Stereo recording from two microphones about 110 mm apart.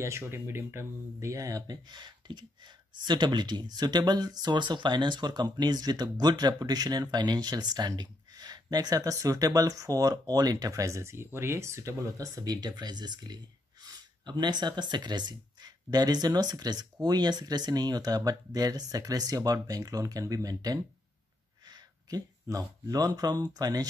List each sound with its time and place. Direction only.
0.0 s speech: 25° right (ahead or behind)